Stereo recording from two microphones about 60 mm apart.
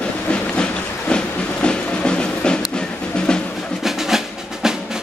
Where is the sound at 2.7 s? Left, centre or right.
Centre.